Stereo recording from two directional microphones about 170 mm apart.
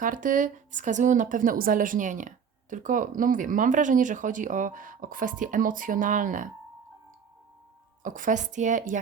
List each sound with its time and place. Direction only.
0.0 s a woman's voice: 50° right (ahead or behind)
8.0 s a woman's voice: 50° right (ahead or behind)